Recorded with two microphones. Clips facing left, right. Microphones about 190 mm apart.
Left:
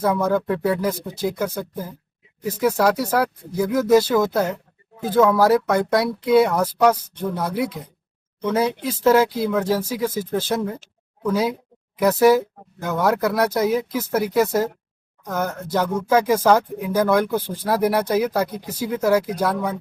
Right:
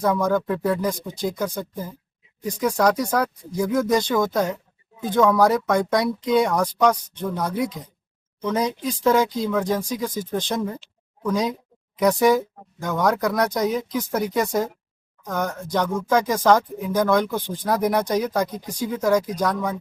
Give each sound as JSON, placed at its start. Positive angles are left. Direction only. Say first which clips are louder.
{"t": 0.0, "sound": "speech", "louder": "left 1 dB", "side_deg": 5}